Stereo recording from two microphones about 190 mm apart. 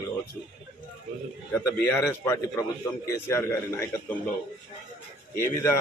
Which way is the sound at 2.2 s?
15° left (ahead or behind).